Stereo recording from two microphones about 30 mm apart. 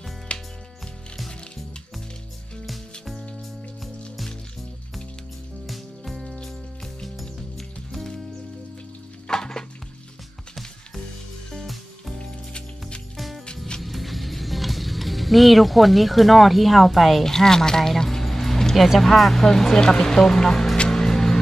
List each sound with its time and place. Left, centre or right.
0.3 s music: left
2.6 s music: centre
5.7 s music: centre
6.4 s music: centre
9.3 s music: left
12.2 s music: left
13.7 s music: centre
17.2 s a woman's voice: centre
20.9 s music: centre